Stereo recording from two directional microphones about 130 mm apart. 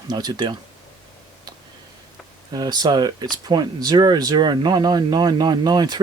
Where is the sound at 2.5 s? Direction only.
30° right (ahead or behind).